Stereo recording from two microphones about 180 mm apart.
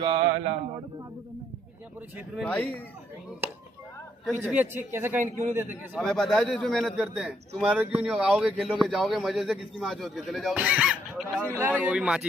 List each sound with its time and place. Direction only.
0.0 s speech: 30° right (ahead or behind)
2.4 s speech: 10° left (ahead or behind)
4.4 s a man's voice: 10° right (ahead or behind)
5.9 s a man's voice: 5° left (ahead or behind)